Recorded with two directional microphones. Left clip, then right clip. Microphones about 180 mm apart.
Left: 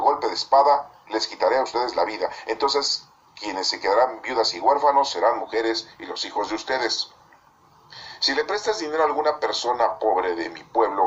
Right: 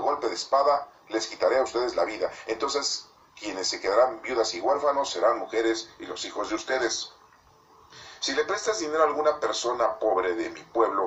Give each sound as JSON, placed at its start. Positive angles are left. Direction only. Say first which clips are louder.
{"t": 0.0, "sound": "a man's voice", "louder": "left 6 dB", "side_deg": 25}
{"t": 8.2, "sound": "a man's voice", "louder": "left 4 dB", "side_deg": 25}